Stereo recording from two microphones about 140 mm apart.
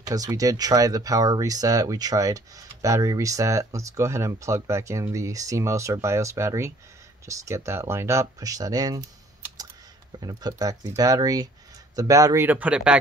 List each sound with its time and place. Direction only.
0.0 s speech: 25° right (ahead or behind)
10.2 s speech: 30° right (ahead or behind)
12.4 s speech: 10° right (ahead or behind)